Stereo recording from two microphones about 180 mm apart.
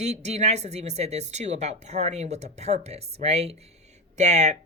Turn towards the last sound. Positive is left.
turn(degrees=-40)  # may be behind; listen again after turning